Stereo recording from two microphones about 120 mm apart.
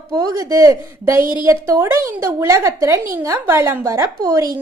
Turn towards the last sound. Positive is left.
turn(degrees=-30)  # may be behind; listen again after turning